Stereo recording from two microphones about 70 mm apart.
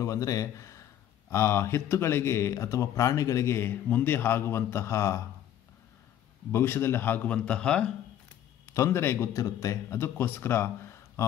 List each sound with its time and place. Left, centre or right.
0.0 s speech: left
6.5 s speech: left
7.2 s a man's voice: centre
8.8 s speech: left
9.4 s speech: left